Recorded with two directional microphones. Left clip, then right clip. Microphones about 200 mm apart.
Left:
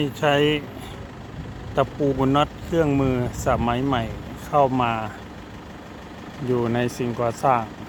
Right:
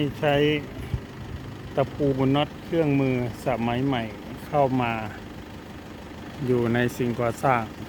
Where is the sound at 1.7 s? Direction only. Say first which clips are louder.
Left 3 dB; 20° left (ahead or behind).